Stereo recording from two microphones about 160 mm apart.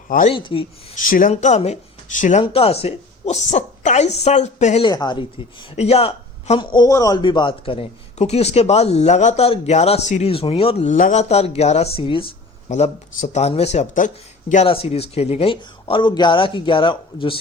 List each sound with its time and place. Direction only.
0.3 s speech: 35° left (ahead or behind)
0.9 s speech: 60° left (ahead or behind)
1.3 s speech: 45° left (ahead or behind)
2.4 s a woman's voice: 35° left (ahead or behind)
4.8 s speech: 25° left (ahead or behind)
5.7 s speech: 40° left (ahead or behind)
14.5 s speech: 40° left (ahead or behind)